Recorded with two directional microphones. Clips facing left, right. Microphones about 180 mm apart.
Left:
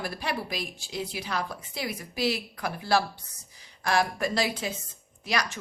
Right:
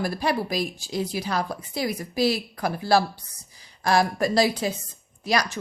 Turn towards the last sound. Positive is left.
turn(degrees=-35)  # may be behind; listen again after turning